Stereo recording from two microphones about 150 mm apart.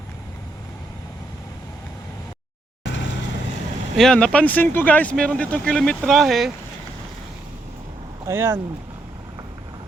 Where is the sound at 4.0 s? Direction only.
5° left (ahead or behind).